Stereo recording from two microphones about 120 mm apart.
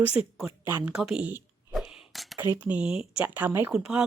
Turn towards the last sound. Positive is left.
turn(degrees=-10)  # may be behind; listen again after turning